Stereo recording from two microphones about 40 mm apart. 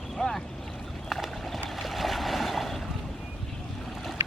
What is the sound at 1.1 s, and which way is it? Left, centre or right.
Run, centre.